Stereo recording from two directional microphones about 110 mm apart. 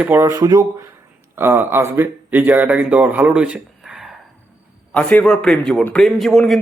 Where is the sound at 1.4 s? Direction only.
20° right (ahead or behind); by 4.1 s 5° right (ahead or behind).